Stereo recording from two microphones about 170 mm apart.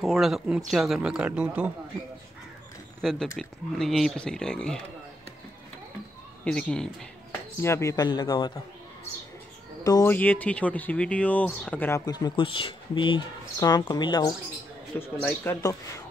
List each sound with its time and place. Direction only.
0.0 s speech: centre (ahead or behind)
3.0 s speech: centre (ahead or behind)
6.4 s speech: 5° left (ahead or behind)
7.6 s speech: 15° left (ahead or behind)
9.8 s speech: 20° left (ahead or behind)
10.1 s speech: 10° left (ahead or behind)
12.0 s speech: 25° left (ahead or behind)
15.0 s speech: 15° left (ahead or behind)